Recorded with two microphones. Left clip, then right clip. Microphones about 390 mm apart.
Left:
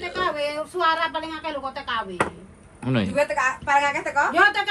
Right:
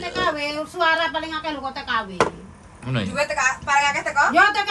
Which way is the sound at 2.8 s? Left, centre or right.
Centre.